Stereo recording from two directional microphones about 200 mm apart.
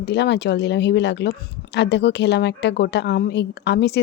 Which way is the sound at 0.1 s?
60° left (ahead or behind).